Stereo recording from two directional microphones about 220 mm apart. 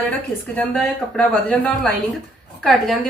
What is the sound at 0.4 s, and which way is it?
A woman's voice, 5° left (ahead or behind).